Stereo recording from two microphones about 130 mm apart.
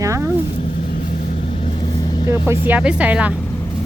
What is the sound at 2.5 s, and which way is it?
Speech, 10° right (ahead or behind).